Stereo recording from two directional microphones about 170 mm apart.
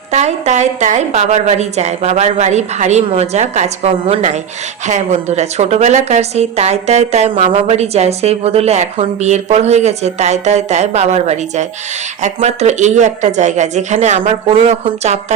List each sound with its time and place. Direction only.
0.1 s a woman's voice: 40° right (ahead or behind)